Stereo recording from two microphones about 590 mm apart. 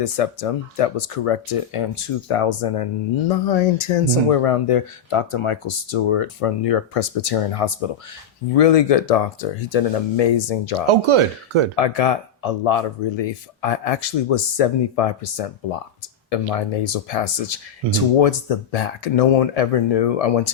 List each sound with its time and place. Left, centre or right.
0.0 s speech: left
4.3 s speech: left
8.5 s speech: left
10.8 s speech: right
11.8 s speech: left